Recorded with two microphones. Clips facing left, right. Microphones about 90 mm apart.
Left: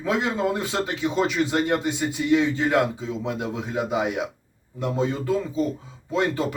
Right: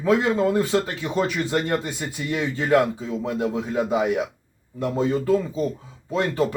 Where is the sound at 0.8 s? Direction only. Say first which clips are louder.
Right 1 dB; 20° left (ahead or behind).